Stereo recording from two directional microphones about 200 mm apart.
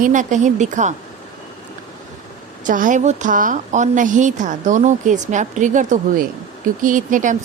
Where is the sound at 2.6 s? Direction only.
40° right (ahead or behind).